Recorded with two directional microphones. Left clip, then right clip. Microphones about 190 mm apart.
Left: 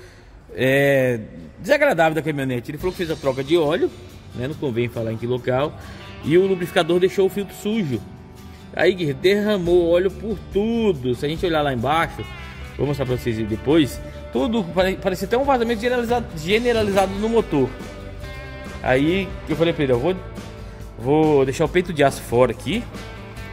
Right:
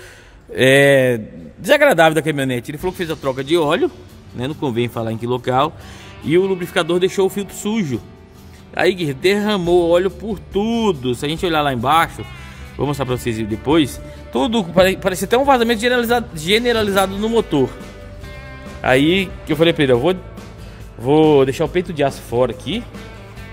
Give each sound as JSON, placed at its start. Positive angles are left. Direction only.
{"t": 0.6, "sound": "speech", "side_deg": -30}
{"t": 6.2, "sound": "speech", "side_deg": -15}
{"t": 18.8, "sound": "speech", "side_deg": -30}
{"t": 21.6, "sound": "speech", "side_deg": 0}